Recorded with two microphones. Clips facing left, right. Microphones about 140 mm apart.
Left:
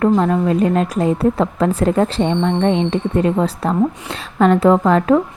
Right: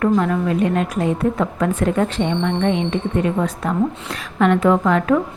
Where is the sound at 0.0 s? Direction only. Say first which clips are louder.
Left 3 dB; 30° left (ahead or behind).